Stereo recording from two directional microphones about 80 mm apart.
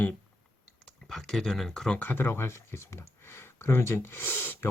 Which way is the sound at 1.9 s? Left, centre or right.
Left.